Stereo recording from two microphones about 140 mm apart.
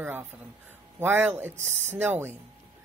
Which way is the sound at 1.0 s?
15° right (ahead or behind).